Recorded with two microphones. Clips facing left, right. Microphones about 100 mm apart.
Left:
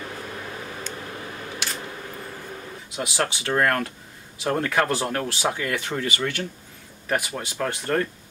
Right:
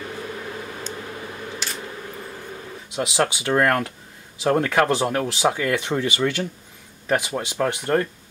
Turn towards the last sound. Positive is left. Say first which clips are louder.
# right 4 dB
turn(degrees=-15)  # may be behind; listen again after turning